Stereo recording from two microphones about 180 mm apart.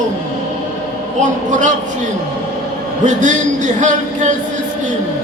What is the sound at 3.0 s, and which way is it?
Speech, 45° right (ahead or behind).